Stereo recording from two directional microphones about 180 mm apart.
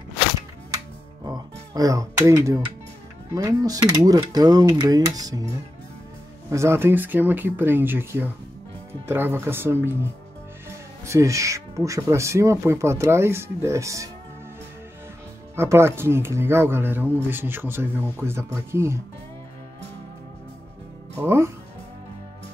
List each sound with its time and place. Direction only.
1.2 s music: 20° right (ahead or behind)
3.3 s speech: 20° right (ahead or behind)
6.5 s speech: 15° right (ahead or behind)
11.1 s speech: 15° right (ahead or behind)
15.5 s speech: 15° right (ahead or behind)